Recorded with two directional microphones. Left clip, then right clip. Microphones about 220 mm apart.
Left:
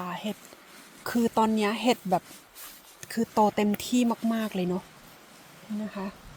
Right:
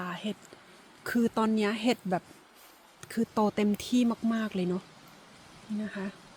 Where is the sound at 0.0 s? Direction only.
5° left (ahead or behind).